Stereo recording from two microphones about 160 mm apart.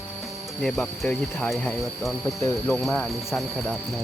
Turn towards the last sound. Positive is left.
turn(degrees=0)  # may be behind; listen again after turning